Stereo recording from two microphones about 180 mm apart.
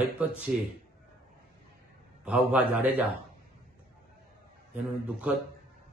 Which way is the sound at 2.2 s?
5° right (ahead or behind).